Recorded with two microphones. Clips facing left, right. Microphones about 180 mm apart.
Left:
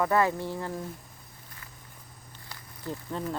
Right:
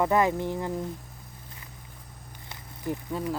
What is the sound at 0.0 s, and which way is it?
Speech, 20° right (ahead or behind).